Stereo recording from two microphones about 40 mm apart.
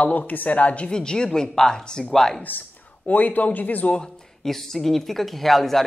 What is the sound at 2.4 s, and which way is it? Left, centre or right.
Speech, left.